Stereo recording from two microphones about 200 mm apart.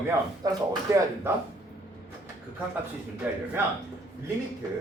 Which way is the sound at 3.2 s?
10° right (ahead or behind).